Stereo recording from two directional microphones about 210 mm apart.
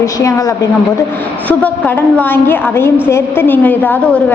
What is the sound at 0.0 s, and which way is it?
A woman's voice, 15° left (ahead or behind).